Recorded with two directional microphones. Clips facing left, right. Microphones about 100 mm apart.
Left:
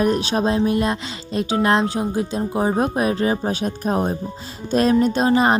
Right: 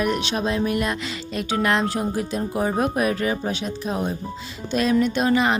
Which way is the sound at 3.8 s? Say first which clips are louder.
Left 5 dB; 45° left (ahead or behind).